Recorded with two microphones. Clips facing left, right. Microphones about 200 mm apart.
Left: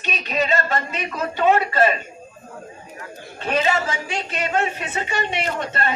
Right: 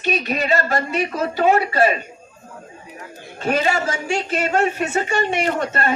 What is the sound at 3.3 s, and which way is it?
Speech, 45° right (ahead or behind).